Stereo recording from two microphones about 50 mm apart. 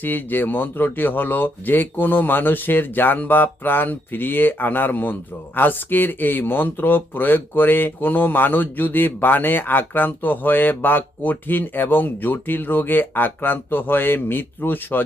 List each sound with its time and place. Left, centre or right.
0.0 s speech: left